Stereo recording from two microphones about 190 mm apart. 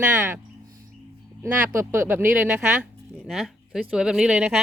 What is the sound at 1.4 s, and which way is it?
Speech, 15° right (ahead or behind).